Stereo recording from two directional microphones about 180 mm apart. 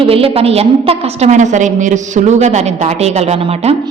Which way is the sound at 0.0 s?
30° right (ahead or behind).